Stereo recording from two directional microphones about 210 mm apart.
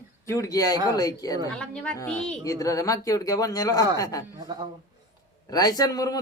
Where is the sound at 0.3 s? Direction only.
15° left (ahead or behind).